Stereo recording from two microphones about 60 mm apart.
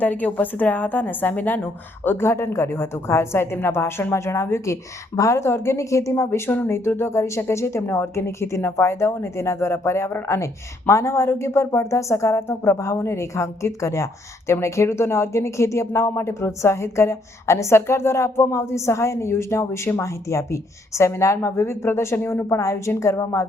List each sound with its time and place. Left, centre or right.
0.0 s a woman's voice: left
5.5 s a woman's voice: left